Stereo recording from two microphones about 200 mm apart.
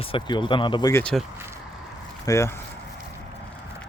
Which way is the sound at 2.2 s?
15° left (ahead or behind).